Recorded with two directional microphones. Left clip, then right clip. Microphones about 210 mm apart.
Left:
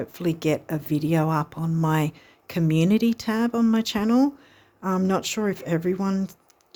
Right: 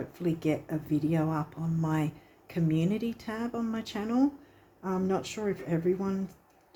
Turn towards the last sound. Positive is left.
turn(degrees=50)  # may be behind; listen again after turning